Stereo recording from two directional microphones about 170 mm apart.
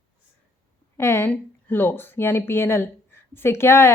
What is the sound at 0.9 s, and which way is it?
Speech, 15° left (ahead or behind).